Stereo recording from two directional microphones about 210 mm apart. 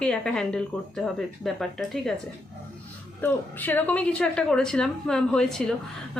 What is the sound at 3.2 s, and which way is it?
A man's voice, 10° left (ahead or behind).